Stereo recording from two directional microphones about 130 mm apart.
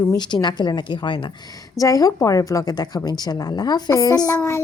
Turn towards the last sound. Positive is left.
turn(degrees=25)  # may be behind; listen again after turning